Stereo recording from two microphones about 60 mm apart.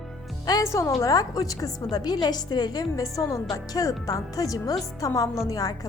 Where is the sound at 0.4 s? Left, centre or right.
Left.